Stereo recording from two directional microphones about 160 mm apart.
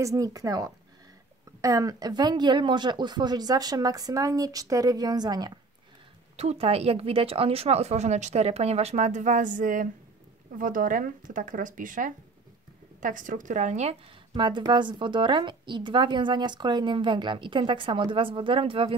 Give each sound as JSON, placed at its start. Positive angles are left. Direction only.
{"t": 0.0, "sound": "speech", "side_deg": -20}
{"t": 6.3, "sound": "a woman's voice", "side_deg": -40}